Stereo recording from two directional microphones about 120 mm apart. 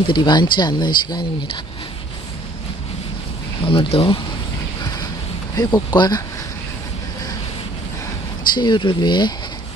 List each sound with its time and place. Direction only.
0.1 s speech: 35° left (ahead or behind)
3.6 s speech: 50° left (ahead or behind)
5.6 s speech: 35° left (ahead or behind)
8.5 s speech: 40° left (ahead or behind)